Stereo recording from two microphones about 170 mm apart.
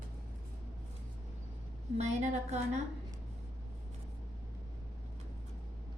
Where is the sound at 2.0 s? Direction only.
40° right (ahead or behind).